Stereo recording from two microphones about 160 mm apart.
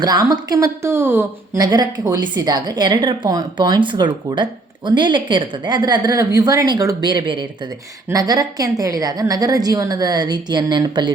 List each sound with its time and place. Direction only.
0.0 s a woman's voice: 25° right (ahead or behind)